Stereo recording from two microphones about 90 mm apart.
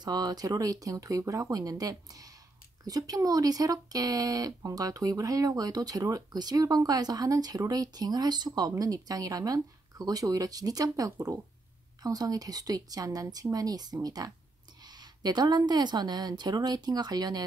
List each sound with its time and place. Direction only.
0.0 s speech: 50° right (ahead or behind)